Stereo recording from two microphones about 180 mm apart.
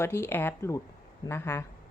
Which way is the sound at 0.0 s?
15° left (ahead or behind).